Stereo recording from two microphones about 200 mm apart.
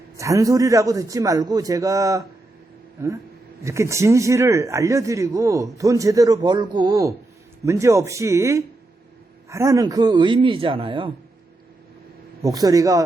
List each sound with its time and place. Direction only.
0.2 s a man's voice: 15° right (ahead or behind)
3.6 s a man's voice: 15° right (ahead or behind)
12.4 s a man's voice: 20° right (ahead or behind)